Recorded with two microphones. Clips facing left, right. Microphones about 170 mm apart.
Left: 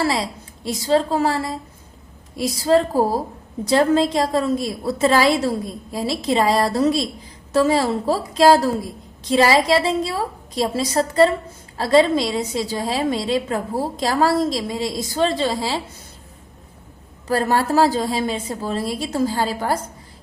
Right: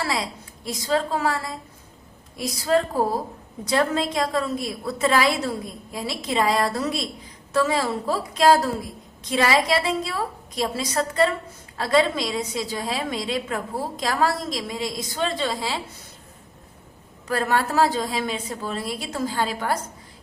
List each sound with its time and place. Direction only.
0.0 s a woman's voice: 30° left (ahead or behind)
17.2 s a woman's voice: 35° left (ahead or behind)